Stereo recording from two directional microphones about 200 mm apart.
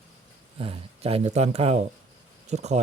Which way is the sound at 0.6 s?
30° right (ahead or behind).